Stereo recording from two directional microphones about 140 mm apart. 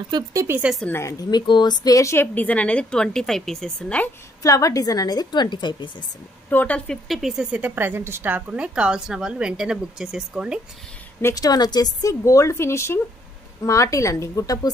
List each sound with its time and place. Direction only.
0.1 s speech: 25° right (ahead or behind)
0.6 s a woman's voice: 5° right (ahead or behind)
0.8 s a woman's voice: 20° left (ahead or behind)
4.4 s a woman's voice: 25° left (ahead or behind)
6.5 s a woman's voice: 10° left (ahead or behind)
7.1 s a woman's voice: centre (ahead or behind)
11.1 s a woman's voice: 25° left (ahead or behind)